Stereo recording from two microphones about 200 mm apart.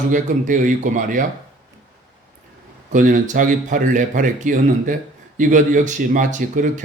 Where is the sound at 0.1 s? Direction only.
40° right (ahead or behind).